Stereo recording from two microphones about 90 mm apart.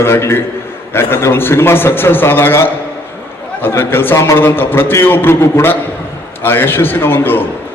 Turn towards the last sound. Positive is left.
turn(degrees=25)  # may be behind; listen again after turning